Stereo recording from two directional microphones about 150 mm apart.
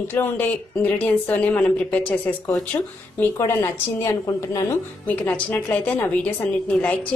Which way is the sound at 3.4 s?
20° left (ahead or behind).